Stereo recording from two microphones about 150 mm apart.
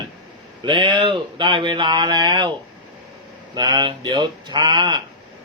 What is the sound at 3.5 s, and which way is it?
Speech, 30° right (ahead or behind).